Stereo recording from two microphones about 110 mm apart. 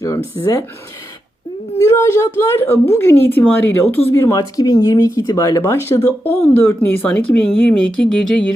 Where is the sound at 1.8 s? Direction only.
25° left (ahead or behind).